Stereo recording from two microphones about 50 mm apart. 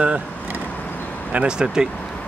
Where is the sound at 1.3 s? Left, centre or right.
Right.